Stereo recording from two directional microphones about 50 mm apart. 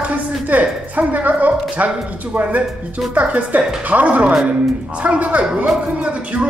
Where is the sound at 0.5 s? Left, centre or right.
Right.